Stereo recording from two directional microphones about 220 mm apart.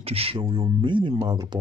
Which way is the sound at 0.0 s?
25° right (ahead or behind).